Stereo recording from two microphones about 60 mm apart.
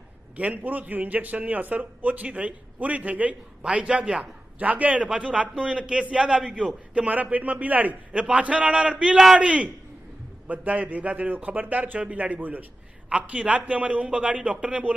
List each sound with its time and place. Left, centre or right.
0.4 s a man's voice: right
9.1 s a man's voice: centre
9.4 s a man's voice: right